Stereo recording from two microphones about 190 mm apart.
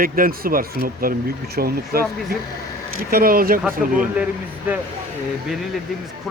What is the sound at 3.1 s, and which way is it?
Speech, 50° right (ahead or behind).